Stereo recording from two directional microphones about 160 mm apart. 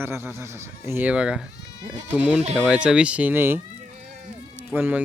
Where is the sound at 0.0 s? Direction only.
15° right (ahead or behind).